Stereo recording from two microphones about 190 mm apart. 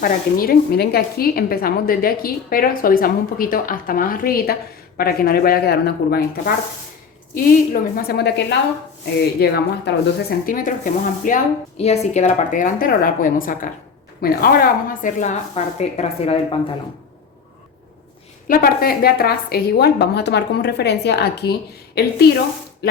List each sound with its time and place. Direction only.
0.0 s a woman's voice: 50° left (ahead or behind); by 16.6 s 30° left (ahead or behind)
18.4 s a woman's voice: 50° left (ahead or behind)